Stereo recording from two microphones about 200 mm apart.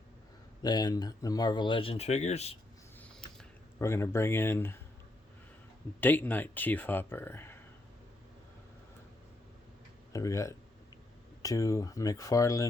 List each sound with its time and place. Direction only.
0.6 s speech: 20° left (ahead or behind)
3.0 s a sound: 5° left (ahead or behind)
6.0 s speech: 10° left (ahead or behind)
10.1 s speech: 15° left (ahead or behind)